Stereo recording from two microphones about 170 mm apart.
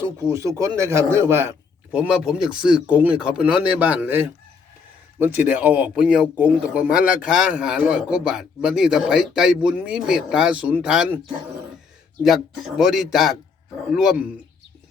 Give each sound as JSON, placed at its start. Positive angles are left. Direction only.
{"t": 0.0, "sound": "a man's voice", "side_deg": -15}
{"t": 12.2, "sound": "speech", "side_deg": 0}